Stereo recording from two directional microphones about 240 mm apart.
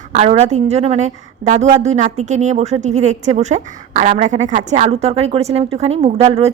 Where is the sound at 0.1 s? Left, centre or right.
Right.